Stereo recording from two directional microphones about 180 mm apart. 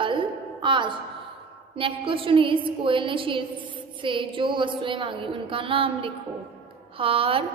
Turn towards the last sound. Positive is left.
turn(degrees=-30)  # may be behind; listen again after turning